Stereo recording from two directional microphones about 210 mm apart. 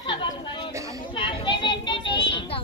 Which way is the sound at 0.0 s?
20° left (ahead or behind).